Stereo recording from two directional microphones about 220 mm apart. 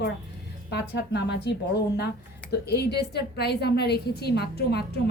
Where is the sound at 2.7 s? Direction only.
50° left (ahead or behind).